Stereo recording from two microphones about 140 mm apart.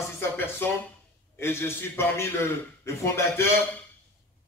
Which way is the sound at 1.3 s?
20° left (ahead or behind).